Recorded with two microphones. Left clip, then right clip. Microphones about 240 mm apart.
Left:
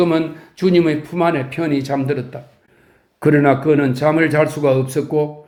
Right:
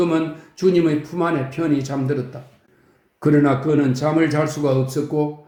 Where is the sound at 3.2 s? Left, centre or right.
Left.